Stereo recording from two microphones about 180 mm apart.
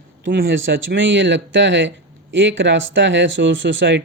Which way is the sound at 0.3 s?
85° right.